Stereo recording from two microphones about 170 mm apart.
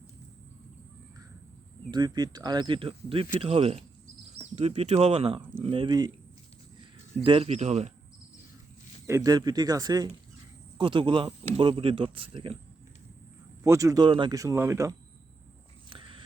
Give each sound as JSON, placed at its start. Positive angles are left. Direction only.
{"t": 1.9, "sound": "speech", "side_deg": -25}
{"t": 7.3, "sound": "speech", "side_deg": -35}
{"t": 9.0, "sound": "speech", "side_deg": -20}
{"t": 13.7, "sound": "speech", "side_deg": -20}
{"t": 15.9, "sound": "a sound", "side_deg": -30}